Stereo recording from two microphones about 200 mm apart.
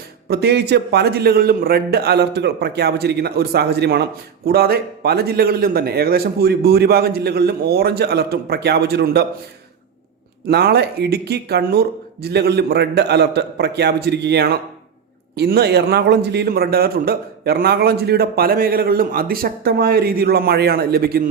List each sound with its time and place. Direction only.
0.3 s a man's voice: 55° right (ahead or behind)
10.5 s a man's voice: 55° right (ahead or behind)